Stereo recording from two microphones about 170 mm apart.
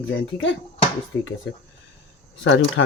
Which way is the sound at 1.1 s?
15° left (ahead or behind).